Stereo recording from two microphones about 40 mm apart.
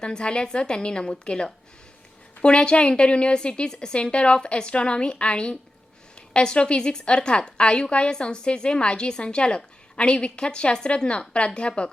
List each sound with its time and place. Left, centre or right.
0.0 s a woman's voice: left